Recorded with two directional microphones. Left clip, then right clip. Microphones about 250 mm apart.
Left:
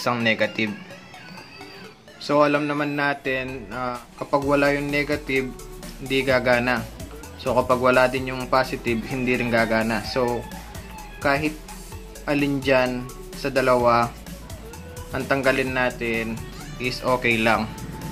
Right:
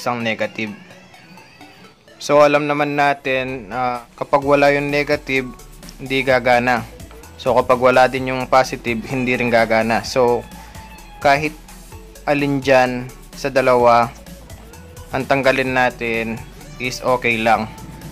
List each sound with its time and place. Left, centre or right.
0.0 s speech: centre
2.2 s speech: right